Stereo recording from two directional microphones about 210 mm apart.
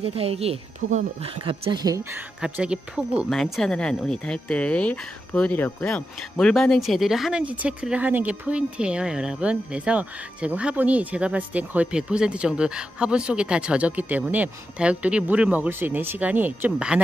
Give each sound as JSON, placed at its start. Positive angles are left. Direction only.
{"t": 0.0, "sound": "speech", "side_deg": -30}
{"t": 2.1, "sound": "speech", "side_deg": -5}